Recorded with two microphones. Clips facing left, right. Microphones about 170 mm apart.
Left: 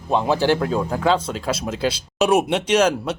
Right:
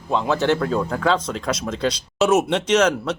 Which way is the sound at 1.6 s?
10° left (ahead or behind).